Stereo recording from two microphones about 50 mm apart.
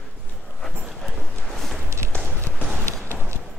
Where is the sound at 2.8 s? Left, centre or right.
Right.